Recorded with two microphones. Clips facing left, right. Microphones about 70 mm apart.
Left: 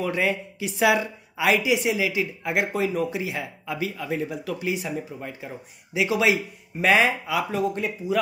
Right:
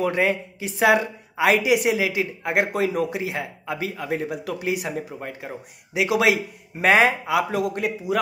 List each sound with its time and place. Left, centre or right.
0.0 s speech: right
6.8 s speech: right